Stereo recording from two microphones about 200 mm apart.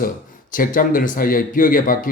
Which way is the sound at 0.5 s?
45° left (ahead or behind).